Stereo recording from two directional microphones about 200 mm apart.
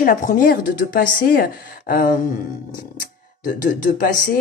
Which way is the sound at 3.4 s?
40° left (ahead or behind).